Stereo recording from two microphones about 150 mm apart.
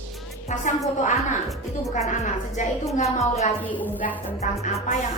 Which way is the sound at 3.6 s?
10° left (ahead or behind).